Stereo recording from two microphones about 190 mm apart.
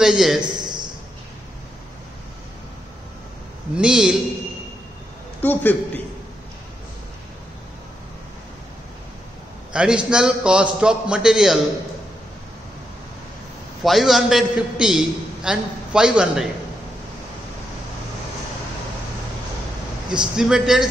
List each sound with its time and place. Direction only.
0.0 s a man's voice: centre (ahead or behind)
0.4 s a sound: 20° right (ahead or behind)
3.7 s a man's voice: 5° right (ahead or behind)
5.4 s a man's voice: 10° left (ahead or behind)
9.7 s a man's voice: 5° right (ahead or behind)
13.8 s a man's voice: centre (ahead or behind)
20.3 s a man's voice: 5° right (ahead or behind)